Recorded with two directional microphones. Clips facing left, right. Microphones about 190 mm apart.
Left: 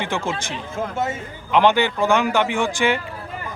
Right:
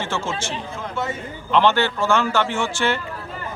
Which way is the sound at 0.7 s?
50° left (ahead or behind).